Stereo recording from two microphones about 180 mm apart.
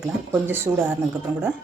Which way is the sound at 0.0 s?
15° right (ahead or behind).